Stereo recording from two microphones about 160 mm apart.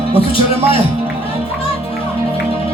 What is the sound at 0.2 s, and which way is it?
Music, 35° left (ahead or behind).